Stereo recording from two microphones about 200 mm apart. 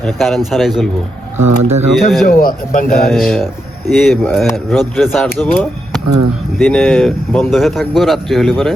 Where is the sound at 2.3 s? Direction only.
45° left (ahead or behind).